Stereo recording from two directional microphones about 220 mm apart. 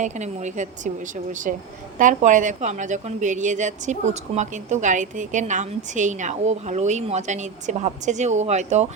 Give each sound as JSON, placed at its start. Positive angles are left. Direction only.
{"t": 0.0, "sound": "a woman's voice", "side_deg": -30}